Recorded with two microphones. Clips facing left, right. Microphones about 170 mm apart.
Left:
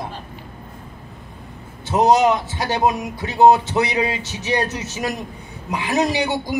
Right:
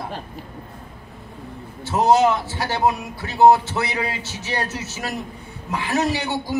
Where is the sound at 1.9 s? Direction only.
20° left (ahead or behind).